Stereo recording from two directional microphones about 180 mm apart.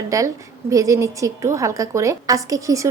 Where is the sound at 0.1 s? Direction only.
20° right (ahead or behind).